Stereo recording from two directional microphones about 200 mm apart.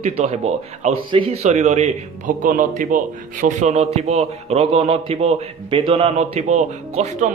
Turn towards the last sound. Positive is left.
turn(degrees=-35)  # may be behind; listen again after turning